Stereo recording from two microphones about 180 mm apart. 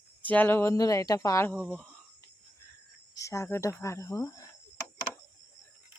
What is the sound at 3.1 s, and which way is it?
Speech, 15° left (ahead or behind).